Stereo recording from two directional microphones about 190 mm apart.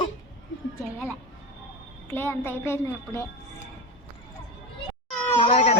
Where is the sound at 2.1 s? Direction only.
10° left (ahead or behind).